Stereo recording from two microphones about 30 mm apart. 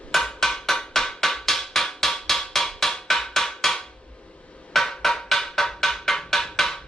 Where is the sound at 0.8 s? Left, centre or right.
Left.